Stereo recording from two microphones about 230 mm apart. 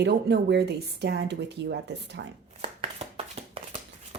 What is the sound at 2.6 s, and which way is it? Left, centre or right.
Chopping, right.